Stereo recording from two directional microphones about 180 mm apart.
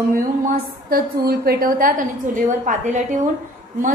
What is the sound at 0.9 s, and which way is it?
A woman's voice, 60° right (ahead or behind).